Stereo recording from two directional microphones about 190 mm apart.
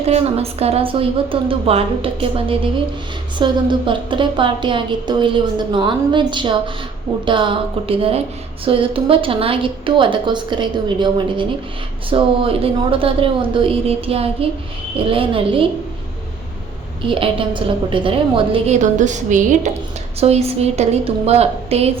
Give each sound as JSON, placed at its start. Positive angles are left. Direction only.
{"t": 0.0, "sound": "a woman's voice", "side_deg": -30}
{"t": 17.0, "sound": "a woman's voice", "side_deg": -30}
{"t": 18.8, "sound": "a woman's voice", "side_deg": -40}